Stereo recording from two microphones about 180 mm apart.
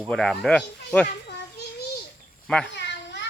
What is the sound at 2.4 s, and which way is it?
Speech, 5° left (ahead or behind).